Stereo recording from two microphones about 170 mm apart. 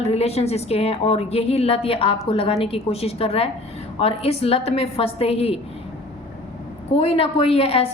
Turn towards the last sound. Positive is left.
turn(degrees=35)  # may be behind; listen again after turning